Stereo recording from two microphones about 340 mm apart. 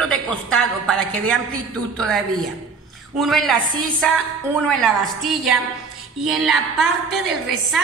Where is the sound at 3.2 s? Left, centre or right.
Centre.